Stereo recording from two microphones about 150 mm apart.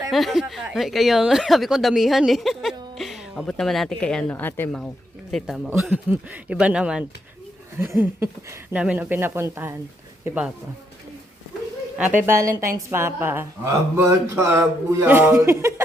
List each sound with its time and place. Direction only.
0.1 s speech: centre (ahead or behind)
5.3 s speech: centre (ahead or behind)
7.8 s speech: 15° right (ahead or behind)
11.9 s speech: 10° right (ahead or behind)